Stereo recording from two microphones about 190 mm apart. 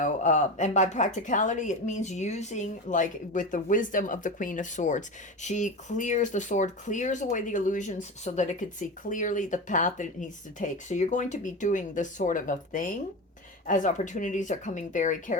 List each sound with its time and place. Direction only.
0.0 s speech: 40° left (ahead or behind)